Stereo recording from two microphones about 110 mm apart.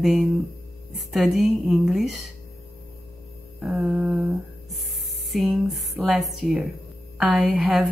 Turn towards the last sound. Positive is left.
turn(degrees=-5)  # may be behind; listen again after turning